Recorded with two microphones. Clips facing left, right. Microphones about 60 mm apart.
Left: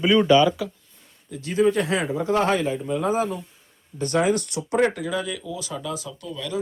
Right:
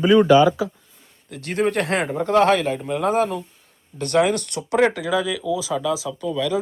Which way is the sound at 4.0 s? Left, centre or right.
Right.